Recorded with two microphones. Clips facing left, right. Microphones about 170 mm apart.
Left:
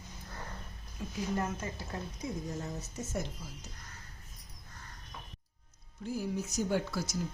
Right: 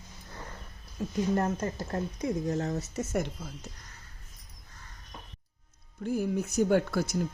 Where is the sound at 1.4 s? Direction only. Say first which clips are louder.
Right 6 dB; 45° right (ahead or behind); by 3.7 s 60° right (ahead or behind).